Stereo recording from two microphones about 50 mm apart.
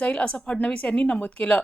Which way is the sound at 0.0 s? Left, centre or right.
Left.